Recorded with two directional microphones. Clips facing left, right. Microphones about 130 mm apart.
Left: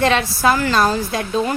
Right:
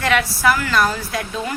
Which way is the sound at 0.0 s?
25° left (ahead or behind).